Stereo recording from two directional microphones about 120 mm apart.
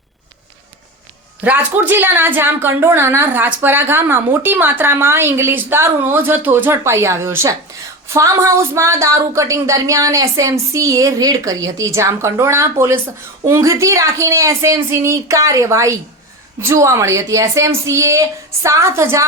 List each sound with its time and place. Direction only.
1.5 s a woman's voice: 15° right (ahead or behind)